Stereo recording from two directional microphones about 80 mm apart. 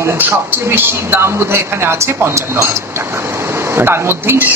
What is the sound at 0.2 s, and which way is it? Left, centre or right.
A man's voice, right.